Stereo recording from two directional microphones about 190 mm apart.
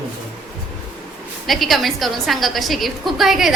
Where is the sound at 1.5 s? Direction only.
Centre (ahead or behind).